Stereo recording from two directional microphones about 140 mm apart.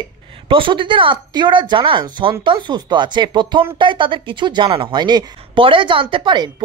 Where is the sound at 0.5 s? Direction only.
35° right (ahead or behind).